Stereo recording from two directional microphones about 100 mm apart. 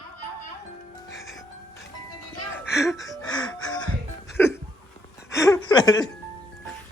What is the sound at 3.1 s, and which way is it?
Music, 40° left (ahead or behind).